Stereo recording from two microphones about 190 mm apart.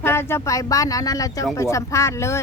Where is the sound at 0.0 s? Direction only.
10° left (ahead or behind).